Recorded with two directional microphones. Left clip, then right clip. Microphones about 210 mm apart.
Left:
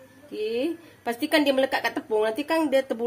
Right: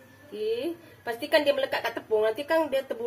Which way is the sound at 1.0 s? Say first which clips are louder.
Left 1 dB; 55° left (ahead or behind).